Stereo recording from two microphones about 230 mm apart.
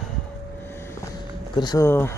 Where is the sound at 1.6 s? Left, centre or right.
Centre.